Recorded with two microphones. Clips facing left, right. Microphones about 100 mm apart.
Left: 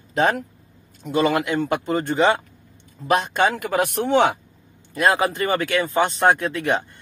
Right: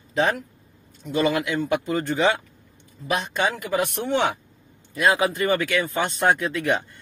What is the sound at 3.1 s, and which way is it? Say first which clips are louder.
A man's voice: left 5 dB; 55° left (ahead or behind).